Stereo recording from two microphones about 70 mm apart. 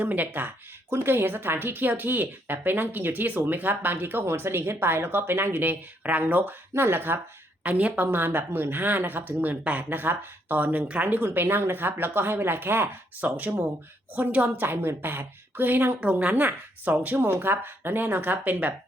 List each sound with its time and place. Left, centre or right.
0.0 s speech: right
7.6 s speech: right
16.0 s speech: centre